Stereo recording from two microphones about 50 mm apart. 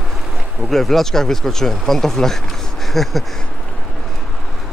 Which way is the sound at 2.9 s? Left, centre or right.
Centre.